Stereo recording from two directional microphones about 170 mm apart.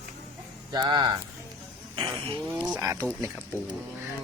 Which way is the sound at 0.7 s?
25° right (ahead or behind).